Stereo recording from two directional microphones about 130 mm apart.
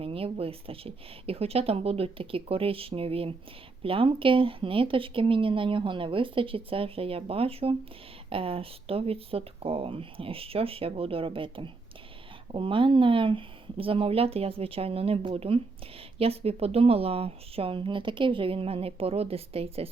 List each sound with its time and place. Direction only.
0.0 s speech: 45° right (ahead or behind)